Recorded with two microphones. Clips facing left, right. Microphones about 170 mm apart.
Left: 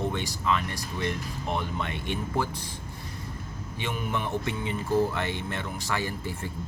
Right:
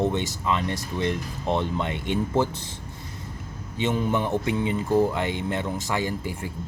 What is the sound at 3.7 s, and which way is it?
Speech, 25° right (ahead or behind).